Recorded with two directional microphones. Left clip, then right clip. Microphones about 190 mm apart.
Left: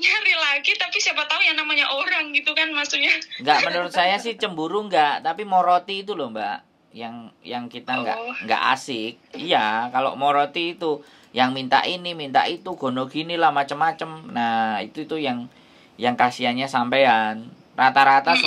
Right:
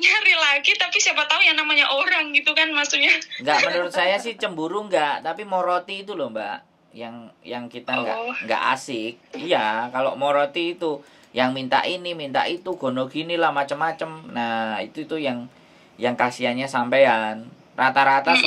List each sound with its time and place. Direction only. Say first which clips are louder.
0.0 s a woman's voice: right 2 dB; 25° right (ahead or behind)
3.8 s speech: left 1 dB; centre (ahead or behind)
8.2 s a woman's voice: right 2 dB; 25° right (ahead or behind)
8.5 s speech: left 2 dB; centre (ahead or behind)